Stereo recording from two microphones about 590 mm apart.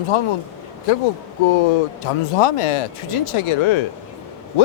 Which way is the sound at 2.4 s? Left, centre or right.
Left.